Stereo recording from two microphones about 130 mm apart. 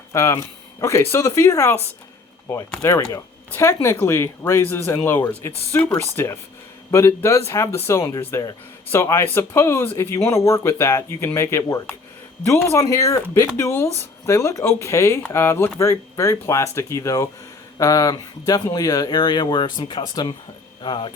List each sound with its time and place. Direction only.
0.1 s speech: 20° left (ahead or behind)